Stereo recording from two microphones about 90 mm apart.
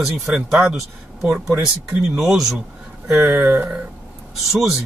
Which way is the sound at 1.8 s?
5° right (ahead or behind).